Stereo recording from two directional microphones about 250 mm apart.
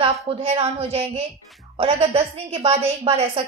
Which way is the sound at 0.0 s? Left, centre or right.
Right.